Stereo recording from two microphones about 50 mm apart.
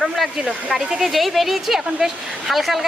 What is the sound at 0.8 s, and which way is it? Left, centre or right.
Speech, centre.